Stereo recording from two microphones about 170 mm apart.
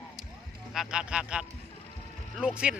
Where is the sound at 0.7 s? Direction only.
5° right (ahead or behind).